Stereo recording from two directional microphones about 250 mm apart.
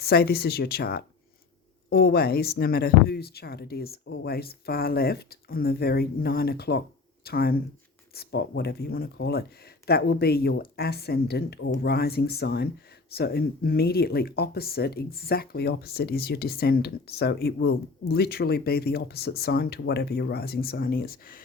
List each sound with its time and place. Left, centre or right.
0.0 s speech: left